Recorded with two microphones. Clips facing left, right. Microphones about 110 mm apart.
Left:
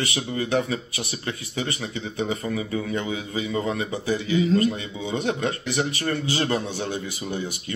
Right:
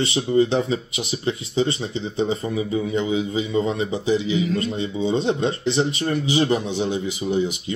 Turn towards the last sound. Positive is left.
turn(degrees=-20)  # may be behind; listen again after turning